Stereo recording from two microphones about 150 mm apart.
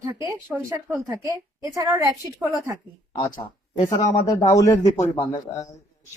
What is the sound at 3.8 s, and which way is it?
Speech, 55° left (ahead or behind).